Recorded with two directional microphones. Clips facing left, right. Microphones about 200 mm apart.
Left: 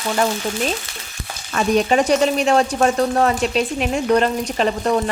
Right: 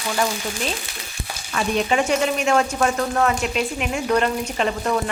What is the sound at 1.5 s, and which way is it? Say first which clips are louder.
Speech: left 4 dB; 40° left (ahead or behind).